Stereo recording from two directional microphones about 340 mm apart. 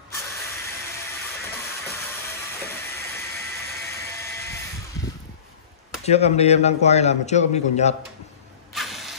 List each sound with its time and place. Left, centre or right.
3.3 s a sound: centre
6.0 s a man's voice: centre
8.7 s mechanisms: centre